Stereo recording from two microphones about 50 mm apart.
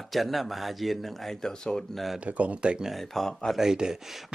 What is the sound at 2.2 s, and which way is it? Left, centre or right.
Speech, right.